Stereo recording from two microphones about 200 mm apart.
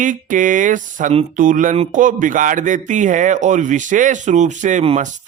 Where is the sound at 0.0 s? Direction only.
40° right (ahead or behind).